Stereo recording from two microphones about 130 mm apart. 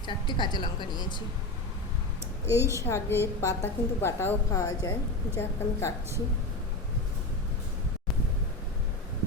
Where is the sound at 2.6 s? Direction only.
20° right (ahead or behind).